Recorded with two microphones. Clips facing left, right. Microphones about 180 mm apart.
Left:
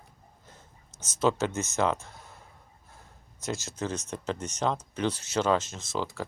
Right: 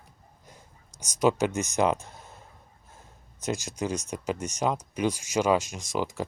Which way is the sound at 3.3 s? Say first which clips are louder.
Right 3 dB; 15° right (ahead or behind).